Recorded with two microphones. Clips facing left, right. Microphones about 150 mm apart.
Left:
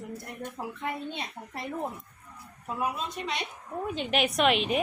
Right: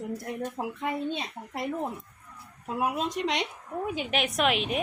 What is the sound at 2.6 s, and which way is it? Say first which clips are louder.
Speech: right 3 dB; 80° right.